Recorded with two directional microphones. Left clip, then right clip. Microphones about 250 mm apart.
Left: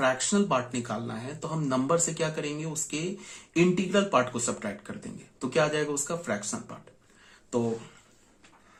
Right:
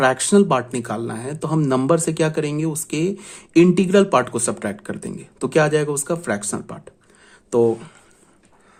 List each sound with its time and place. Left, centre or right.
0.0 s speech: right